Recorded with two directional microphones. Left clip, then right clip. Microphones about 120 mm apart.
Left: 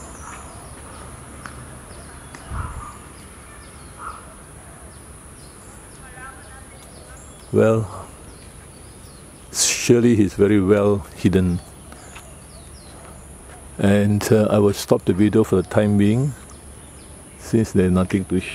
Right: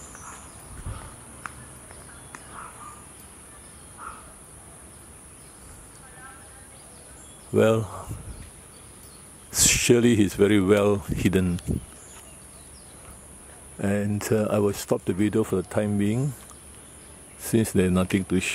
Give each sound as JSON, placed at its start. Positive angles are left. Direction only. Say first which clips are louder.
{"t": 7.5, "sound": "speech", "louder": "left 4 dB", "side_deg": -5}
{"t": 9.5, "sound": "speech", "louder": "left 3 dB", "side_deg": -5}
{"t": 13.7, "sound": "speech", "louder": "left 9 dB", "side_deg": 10}
{"t": 17.7, "sound": "speech", "louder": "left 6 dB", "side_deg": -5}
{"t": 18.2, "sound": "speech", "louder": "left 2 dB", "side_deg": -35}